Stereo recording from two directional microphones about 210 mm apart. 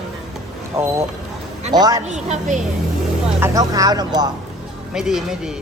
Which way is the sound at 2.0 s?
35° right (ahead or behind).